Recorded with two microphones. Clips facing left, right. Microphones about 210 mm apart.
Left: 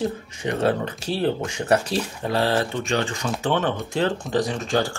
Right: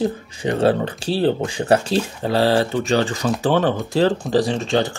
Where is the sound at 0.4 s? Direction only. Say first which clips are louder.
Right 5 dB; 30° right (ahead or behind).